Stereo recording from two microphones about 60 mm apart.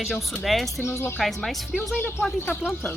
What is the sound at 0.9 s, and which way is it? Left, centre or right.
Speech, left.